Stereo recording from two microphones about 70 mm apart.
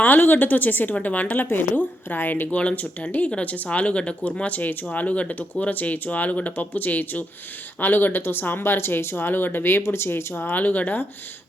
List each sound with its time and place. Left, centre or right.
0.0 s speech: left
10.6 s speech: left